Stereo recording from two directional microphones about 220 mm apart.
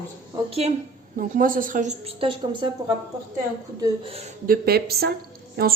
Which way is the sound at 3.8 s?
25° right (ahead or behind).